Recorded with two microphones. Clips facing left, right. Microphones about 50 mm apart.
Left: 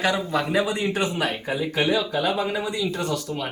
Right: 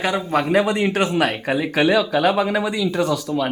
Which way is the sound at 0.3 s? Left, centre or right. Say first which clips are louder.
Right 5 dB; right.